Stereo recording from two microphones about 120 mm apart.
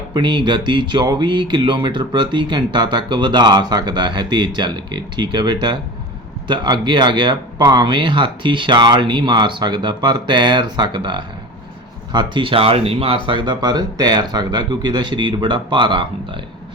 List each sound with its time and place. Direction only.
0.1 s speech: 40° right (ahead or behind)